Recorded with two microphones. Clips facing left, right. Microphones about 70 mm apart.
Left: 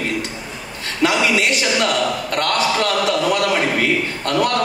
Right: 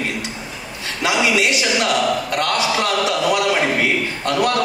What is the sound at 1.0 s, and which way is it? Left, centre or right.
A man's voice, left.